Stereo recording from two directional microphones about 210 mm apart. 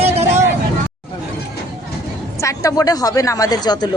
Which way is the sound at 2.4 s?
15° left (ahead or behind).